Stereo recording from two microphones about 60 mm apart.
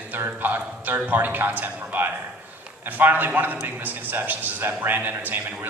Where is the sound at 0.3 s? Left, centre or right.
Right.